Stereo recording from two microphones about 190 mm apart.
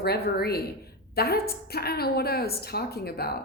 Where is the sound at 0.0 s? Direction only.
55° left (ahead or behind).